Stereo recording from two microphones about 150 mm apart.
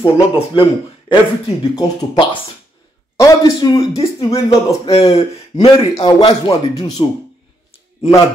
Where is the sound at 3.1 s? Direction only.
20° left (ahead or behind).